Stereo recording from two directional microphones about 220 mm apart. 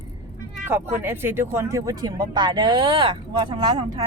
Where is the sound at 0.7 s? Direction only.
10° right (ahead or behind).